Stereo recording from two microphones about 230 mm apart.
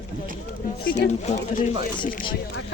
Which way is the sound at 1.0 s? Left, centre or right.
Left.